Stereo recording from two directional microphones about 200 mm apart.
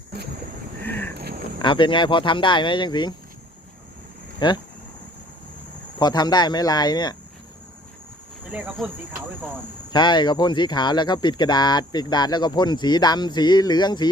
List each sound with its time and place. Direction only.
0.8 s a sound: 10° left (ahead or behind)
1.1 s a sound: 55° right (ahead or behind)
1.6 s speech: 25° left (ahead or behind)
4.4 s speech: 20° left (ahead or behind)
6.0 s speech: 20° left (ahead or behind)
8.5 s cricket: 10° right (ahead or behind)
9.9 s speech: 20° left (ahead or behind)